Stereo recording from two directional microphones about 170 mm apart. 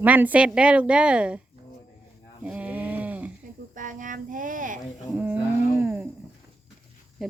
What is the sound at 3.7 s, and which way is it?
Speech, 50° right (ahead or behind).